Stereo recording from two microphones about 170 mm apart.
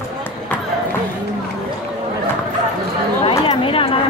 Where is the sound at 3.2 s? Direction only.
30° left (ahead or behind).